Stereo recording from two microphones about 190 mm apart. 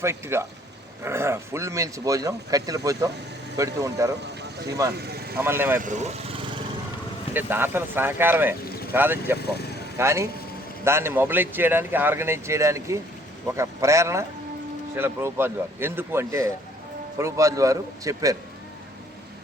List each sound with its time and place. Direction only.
0.0 s speech: 15° right (ahead or behind)
4.9 s speech: 55° right (ahead or behind)
5.4 s speech: 10° right (ahead or behind)
5.8 s speech: 40° right (ahead or behind)
7.3 s speech: 10° right (ahead or behind)